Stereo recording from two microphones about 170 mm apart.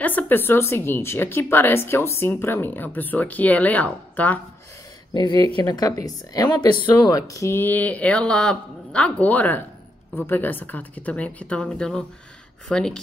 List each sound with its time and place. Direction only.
0.0 s speech: 10° left (ahead or behind)
5.1 s speech: 25° left (ahead or behind); by 13.0 s 5° left (ahead or behind)